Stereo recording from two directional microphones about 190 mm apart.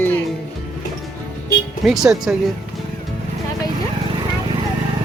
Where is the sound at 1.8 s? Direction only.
Centre (ahead or behind).